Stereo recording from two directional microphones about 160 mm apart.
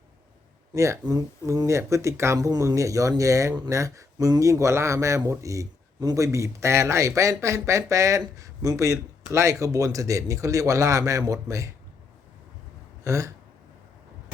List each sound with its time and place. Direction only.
0.7 s speech: 20° right (ahead or behind)
13.1 s speech: 20° right (ahead or behind)